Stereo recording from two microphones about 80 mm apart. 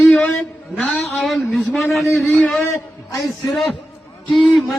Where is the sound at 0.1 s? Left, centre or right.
Centre.